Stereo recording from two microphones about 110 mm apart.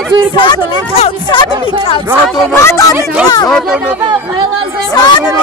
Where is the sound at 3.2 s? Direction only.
40° left (ahead or behind).